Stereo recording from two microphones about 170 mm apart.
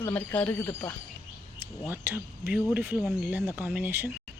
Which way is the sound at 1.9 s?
10° right (ahead or behind).